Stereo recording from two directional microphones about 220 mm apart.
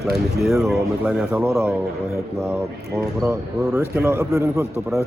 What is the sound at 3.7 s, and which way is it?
A man's voice, 10° right (ahead or behind).